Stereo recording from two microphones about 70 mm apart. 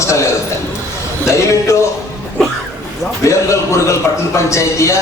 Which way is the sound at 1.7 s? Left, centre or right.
Left.